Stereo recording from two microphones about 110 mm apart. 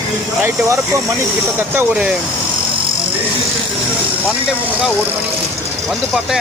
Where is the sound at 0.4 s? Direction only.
30° right (ahead or behind).